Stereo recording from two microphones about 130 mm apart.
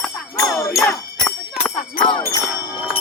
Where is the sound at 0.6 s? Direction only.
20° left (ahead or behind).